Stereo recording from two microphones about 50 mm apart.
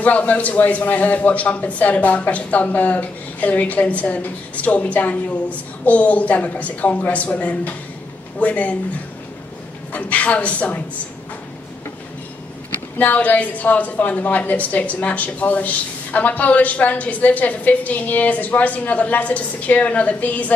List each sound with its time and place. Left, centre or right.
0.0 s a woman's voice: left
9.9 s a woman's voice: left
13.0 s a woman's voice: left